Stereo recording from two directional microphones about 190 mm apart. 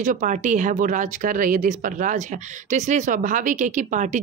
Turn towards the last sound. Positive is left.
turn(degrees=-40)  # may be behind; listen again after turning